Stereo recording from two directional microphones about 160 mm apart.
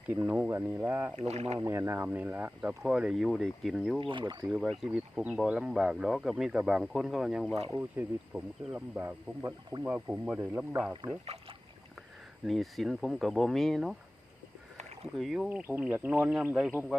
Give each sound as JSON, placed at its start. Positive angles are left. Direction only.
{"t": 0.1, "sound": "speech", "side_deg": -10}
{"t": 1.2, "sound": "speech", "side_deg": -40}
{"t": 1.5, "sound": "speech", "side_deg": -15}
{"t": 4.0, "sound": "speech", "side_deg": -30}
{"t": 4.4, "sound": "speech", "side_deg": 0}
{"t": 7.7, "sound": "speech", "side_deg": -10}
{"t": 12.5, "sound": "speech", "side_deg": 0}
{"t": 15.1, "sound": "speech", "side_deg": 0}